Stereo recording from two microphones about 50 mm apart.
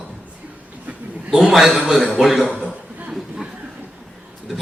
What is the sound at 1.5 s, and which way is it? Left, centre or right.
Speech, centre.